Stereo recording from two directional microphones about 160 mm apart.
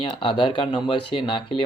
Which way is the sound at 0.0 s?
35° left (ahead or behind).